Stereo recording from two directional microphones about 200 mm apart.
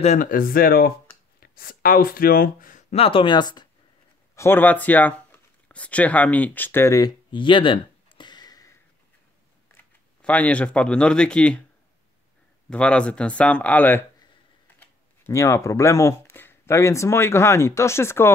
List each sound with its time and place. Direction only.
0.0 s speech: 40° left (ahead or behind)
2.9 s speech: 25° left (ahead or behind)
4.4 s speech: 10° left (ahead or behind)
10.2 s speech: 5° left (ahead or behind)
12.6 s speech: 5° left (ahead or behind)